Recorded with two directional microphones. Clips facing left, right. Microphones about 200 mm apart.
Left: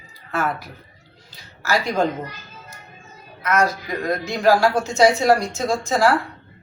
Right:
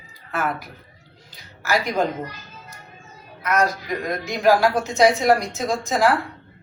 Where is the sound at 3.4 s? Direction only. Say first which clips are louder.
Left 1 dB; 15° right (ahead or behind).